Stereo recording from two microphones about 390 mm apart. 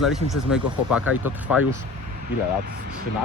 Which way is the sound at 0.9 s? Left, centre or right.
Centre.